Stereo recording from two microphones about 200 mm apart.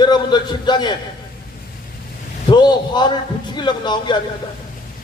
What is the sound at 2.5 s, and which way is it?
A man's voice, 20° left (ahead or behind).